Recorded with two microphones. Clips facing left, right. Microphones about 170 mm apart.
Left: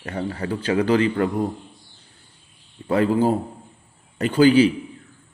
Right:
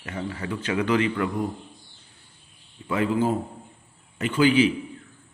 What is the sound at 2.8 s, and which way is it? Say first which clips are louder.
A man's voice: left 5 dB; 40° left (ahead or behind).